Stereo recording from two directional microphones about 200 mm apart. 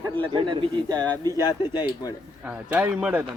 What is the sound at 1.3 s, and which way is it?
Speech, 20° left (ahead or behind).